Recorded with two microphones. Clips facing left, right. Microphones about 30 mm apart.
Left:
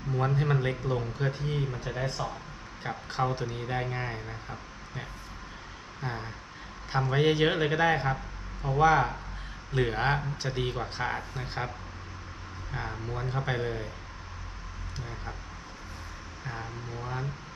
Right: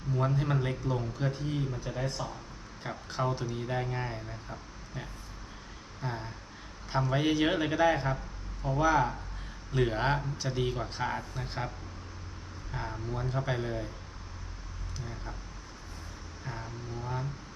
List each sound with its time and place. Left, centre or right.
0.2 s speech: centre
6.0 s speech: centre
12.7 s speech: centre
15.0 s speech: centre
16.4 s speech: left